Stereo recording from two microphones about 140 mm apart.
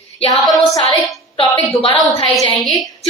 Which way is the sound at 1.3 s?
40° left (ahead or behind).